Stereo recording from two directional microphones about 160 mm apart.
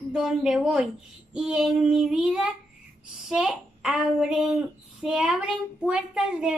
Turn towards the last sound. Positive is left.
turn(degrees=-5)  # may be behind; listen again after turning